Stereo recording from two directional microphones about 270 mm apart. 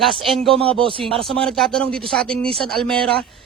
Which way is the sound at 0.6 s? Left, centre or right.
Centre.